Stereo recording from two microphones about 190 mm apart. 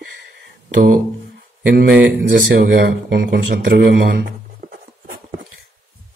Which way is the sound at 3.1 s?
55° right (ahead or behind).